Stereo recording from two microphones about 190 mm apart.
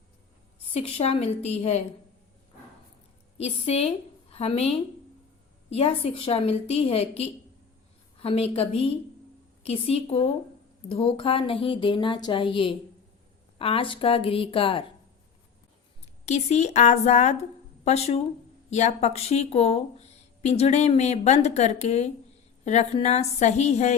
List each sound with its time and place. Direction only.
0.7 s speech: 35° left (ahead or behind)
3.3 s a woman's voice: 35° left (ahead or behind)
5.7 s speech: 30° left (ahead or behind)
16.2 s speech: 35° left (ahead or behind)